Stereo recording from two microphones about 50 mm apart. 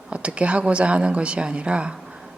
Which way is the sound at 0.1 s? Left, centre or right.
Right.